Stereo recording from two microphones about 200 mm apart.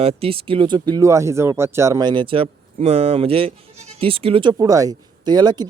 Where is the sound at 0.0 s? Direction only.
30° right (ahead or behind).